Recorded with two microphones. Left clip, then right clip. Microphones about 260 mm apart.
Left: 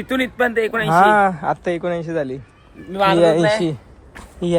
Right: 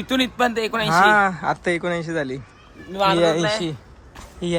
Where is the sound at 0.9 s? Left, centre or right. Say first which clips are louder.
Left 2 dB; centre.